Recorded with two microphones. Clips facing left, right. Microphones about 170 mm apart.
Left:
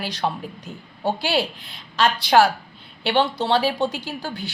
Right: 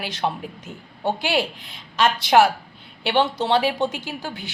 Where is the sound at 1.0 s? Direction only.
15° right (ahead or behind).